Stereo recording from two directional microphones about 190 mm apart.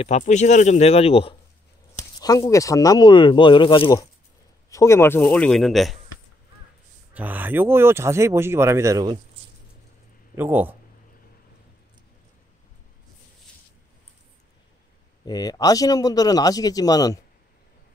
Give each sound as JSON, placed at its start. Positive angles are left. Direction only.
{"t": 0.0, "sound": "speech", "side_deg": 35}
{"t": 2.1, "sound": "a man's voice", "side_deg": 20}
{"t": 7.2, "sound": "speech", "side_deg": -10}
{"t": 10.3, "sound": "speech", "side_deg": -10}
{"t": 15.2, "sound": "a man's voice", "side_deg": 20}